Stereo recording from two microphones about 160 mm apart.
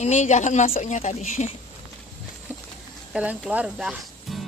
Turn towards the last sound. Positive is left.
turn(degrees=-5)  # may be behind; listen again after turning